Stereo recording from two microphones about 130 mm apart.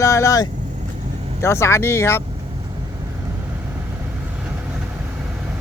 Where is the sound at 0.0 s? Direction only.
25° left (ahead or behind).